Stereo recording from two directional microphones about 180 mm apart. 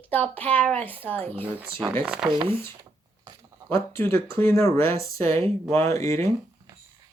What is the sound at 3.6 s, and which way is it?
Speech, 15° left (ahead or behind).